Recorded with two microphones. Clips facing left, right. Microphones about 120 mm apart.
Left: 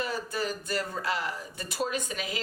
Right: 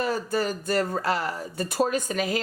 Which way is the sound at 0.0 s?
45° right (ahead or behind).